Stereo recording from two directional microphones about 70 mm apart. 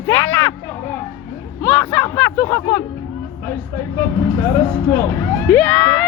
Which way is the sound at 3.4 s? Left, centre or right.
Left.